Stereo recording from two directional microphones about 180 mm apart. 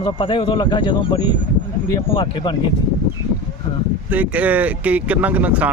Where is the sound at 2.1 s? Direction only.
25° left (ahead or behind).